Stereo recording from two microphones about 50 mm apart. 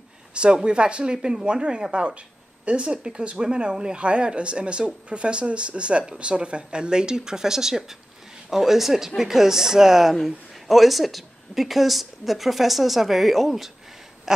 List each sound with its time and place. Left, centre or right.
0.3 s speech: centre